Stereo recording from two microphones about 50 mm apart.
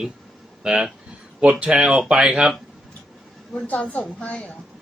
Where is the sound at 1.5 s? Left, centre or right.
Right.